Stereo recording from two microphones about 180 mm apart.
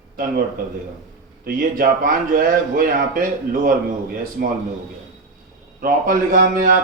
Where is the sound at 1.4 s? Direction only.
50° right (ahead or behind).